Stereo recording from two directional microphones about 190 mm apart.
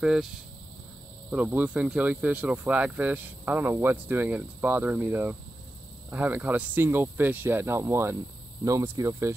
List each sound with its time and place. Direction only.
0.0 s speech: centre (ahead or behind)
1.3 s speech: 5° right (ahead or behind)